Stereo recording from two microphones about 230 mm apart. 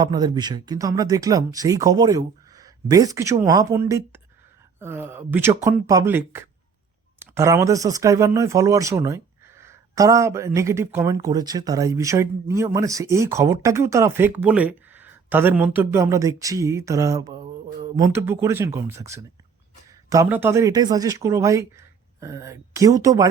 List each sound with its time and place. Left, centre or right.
0.0 s speech: centre